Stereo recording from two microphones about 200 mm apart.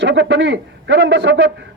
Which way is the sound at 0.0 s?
65° right (ahead or behind).